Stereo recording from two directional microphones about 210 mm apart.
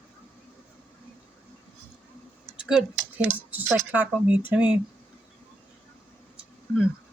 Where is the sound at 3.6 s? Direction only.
5° right (ahead or behind).